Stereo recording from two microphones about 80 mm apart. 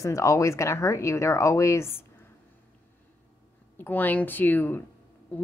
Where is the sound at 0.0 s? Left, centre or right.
Left.